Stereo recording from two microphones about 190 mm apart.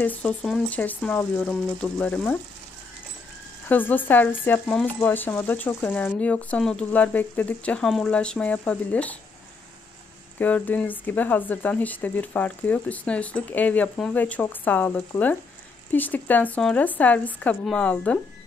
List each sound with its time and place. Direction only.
0.0 s speech: 5° left (ahead or behind)
3.6 s speech: 10° left (ahead or behind)
10.4 s speech: 10° left (ahead or behind)